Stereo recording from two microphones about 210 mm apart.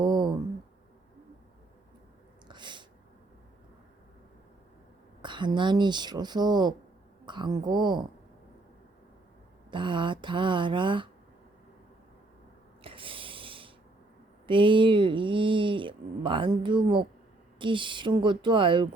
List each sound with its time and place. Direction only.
0.0 s a sound: 20° right (ahead or behind)
2.5 s sneeze: 20° right (ahead or behind)
5.2 s speech: 20° right (ahead or behind)
9.7 s speech: 25° right (ahead or behind)
12.8 s a sound: 25° right (ahead or behind)
14.4 s speech: 25° right (ahead or behind)